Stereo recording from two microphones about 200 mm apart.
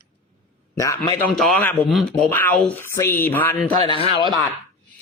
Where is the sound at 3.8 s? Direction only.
25° left (ahead or behind).